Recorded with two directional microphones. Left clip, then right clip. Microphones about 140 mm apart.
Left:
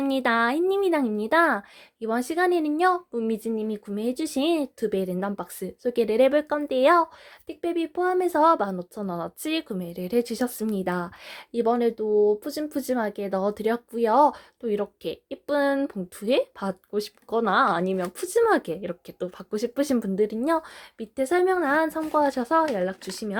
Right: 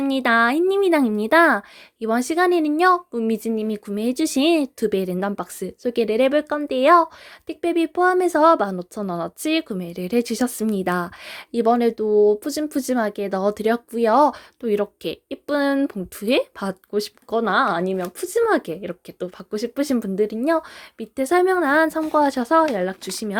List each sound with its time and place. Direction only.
0.0 s speech: 20° right (ahead or behind)